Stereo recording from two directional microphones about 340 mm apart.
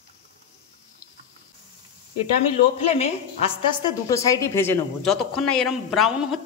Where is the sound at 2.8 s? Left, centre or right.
Centre.